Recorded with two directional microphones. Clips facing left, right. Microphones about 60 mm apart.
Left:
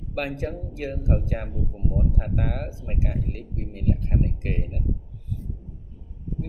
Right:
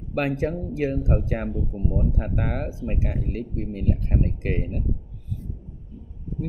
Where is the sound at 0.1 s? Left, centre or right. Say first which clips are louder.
Right 5 dB; right.